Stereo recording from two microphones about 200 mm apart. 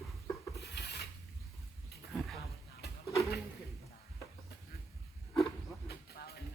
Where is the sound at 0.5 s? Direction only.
55° left (ahead or behind).